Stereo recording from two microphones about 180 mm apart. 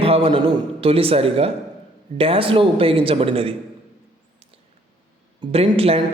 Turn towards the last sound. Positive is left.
turn(degrees=-30)  # may be behind; listen again after turning